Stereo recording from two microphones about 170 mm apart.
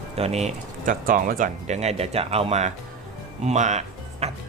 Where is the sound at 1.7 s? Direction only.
40° right (ahead or behind).